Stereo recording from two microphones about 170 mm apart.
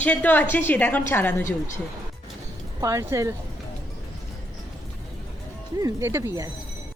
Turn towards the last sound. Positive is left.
turn(degrees=-15)  # may be behind; listen again after turning